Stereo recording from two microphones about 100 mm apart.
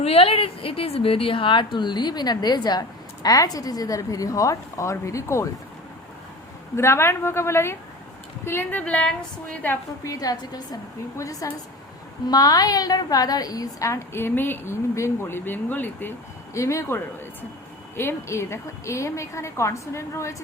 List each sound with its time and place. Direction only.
0.0 s a woman's voice: 80° left; by 5.5 s 30° left (ahead or behind)
6.7 s a woman's voice: 25° left (ahead or behind)
10.0 s a woman's voice: 35° left (ahead or behind)